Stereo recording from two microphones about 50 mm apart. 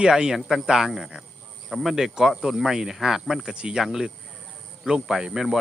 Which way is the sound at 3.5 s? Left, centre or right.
Centre.